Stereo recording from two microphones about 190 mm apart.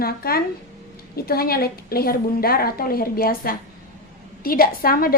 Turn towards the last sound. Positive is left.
turn(degrees=50)  # may be behind; listen again after turning